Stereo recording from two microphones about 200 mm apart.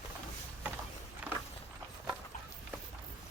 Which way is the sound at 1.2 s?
5° right (ahead or behind).